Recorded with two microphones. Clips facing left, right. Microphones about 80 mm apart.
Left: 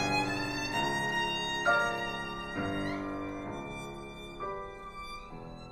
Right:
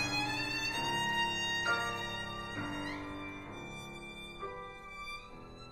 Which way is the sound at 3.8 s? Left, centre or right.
Left.